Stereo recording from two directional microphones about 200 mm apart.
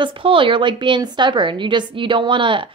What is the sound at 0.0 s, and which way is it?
A woman's voice, 25° right (ahead or behind).